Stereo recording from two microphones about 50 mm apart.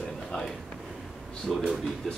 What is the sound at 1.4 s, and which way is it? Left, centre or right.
Speech, centre.